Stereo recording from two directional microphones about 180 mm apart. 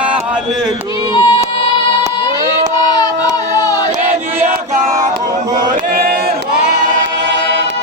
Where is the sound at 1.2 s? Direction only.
30° left (ahead or behind).